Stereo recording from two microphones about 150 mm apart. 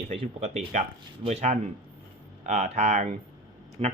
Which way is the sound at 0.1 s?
40° right (ahead or behind).